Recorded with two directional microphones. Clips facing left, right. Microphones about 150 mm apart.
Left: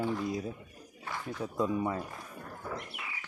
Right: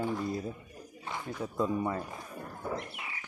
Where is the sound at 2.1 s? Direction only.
20° right (ahead or behind).